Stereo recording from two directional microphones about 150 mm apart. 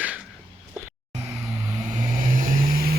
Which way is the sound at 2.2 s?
65° right (ahead or behind).